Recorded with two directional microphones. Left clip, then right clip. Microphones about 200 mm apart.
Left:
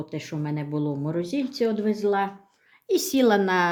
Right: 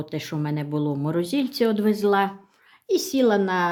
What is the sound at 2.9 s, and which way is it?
Speech, centre (ahead or behind).